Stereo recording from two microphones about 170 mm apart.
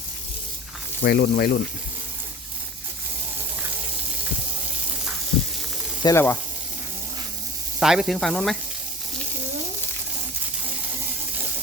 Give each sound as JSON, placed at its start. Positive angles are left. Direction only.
{"t": 1.0, "sound": "speech", "side_deg": 70}
{"t": 6.0, "sound": "speech", "side_deg": 20}
{"t": 7.8, "sound": "sizzle", "side_deg": -5}